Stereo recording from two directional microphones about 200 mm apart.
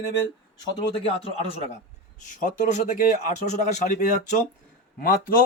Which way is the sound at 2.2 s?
40° left (ahead or behind).